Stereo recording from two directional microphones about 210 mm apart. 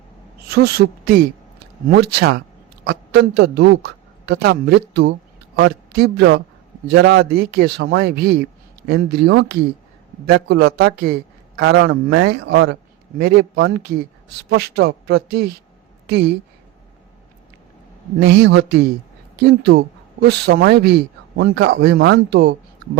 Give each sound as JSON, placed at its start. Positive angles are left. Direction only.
{"t": 0.5, "sound": "a man's voice", "side_deg": -50}
{"t": 18.3, "sound": "speech", "side_deg": -55}